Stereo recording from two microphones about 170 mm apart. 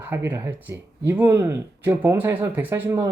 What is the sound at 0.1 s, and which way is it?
Speech, 15° right (ahead or behind).